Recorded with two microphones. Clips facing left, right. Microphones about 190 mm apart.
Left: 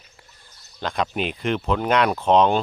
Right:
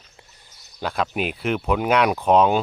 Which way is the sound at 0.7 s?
5° right (ahead or behind).